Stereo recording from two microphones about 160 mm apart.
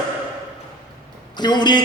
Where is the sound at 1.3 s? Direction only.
25° left (ahead or behind).